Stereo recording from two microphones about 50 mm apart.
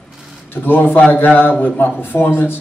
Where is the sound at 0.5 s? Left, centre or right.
Left.